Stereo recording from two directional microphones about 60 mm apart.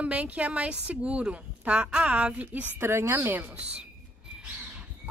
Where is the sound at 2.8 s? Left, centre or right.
Right.